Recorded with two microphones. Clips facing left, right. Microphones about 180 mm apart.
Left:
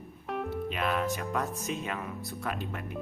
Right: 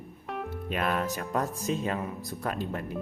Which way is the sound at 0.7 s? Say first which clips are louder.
Right 3 dB; 45° right (ahead or behind).